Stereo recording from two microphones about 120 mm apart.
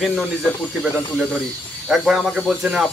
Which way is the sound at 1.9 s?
Centre (ahead or behind).